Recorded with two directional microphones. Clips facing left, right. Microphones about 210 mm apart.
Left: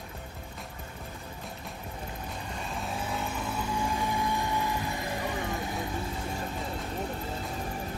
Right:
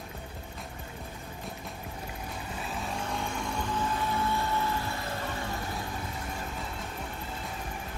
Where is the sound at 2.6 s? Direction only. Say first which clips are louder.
Even; centre (ahead or behind); by 5.2 s 15° left (ahead or behind).